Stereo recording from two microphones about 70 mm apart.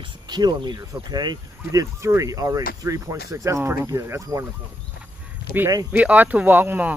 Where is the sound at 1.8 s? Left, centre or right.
Right.